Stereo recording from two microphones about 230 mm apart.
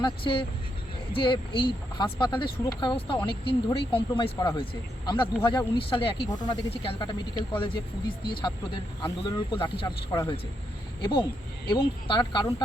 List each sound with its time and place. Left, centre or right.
0.0 s speech: left